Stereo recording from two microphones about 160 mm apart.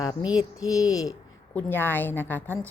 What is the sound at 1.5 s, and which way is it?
Mantra, 10° left (ahead or behind).